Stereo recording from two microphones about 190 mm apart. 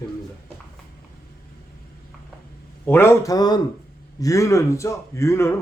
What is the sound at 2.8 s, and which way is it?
Speech, 10° left (ahead or behind).